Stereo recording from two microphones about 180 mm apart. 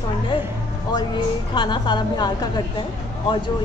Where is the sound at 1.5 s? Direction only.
25° left (ahead or behind).